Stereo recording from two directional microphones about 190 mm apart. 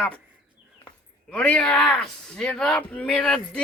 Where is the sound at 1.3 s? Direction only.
5° left (ahead or behind).